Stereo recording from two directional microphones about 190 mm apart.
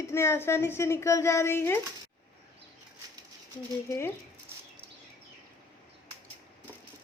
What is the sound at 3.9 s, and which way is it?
Speech, 15° left (ahead or behind).